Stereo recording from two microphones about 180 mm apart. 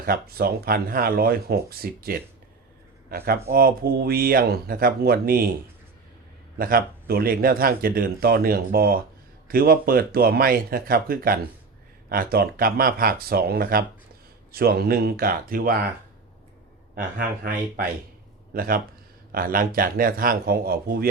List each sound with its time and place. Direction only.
0.0 s speech: 55° right (ahead or behind)
6.6 s speech: 55° right (ahead or behind)
16.9 s speech: 55° right (ahead or behind)